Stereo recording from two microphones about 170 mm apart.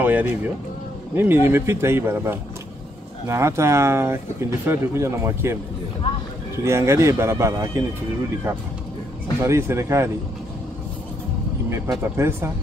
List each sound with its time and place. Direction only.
0.0 s speech: 10° right (ahead or behind)
6.6 s speech: 15° right (ahead or behind)
9.4 s speech: 15° right (ahead or behind)
12.0 s speech: 15° right (ahead or behind)